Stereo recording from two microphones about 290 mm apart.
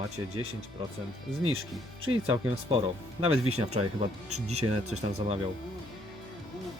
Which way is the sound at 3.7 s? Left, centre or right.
Right.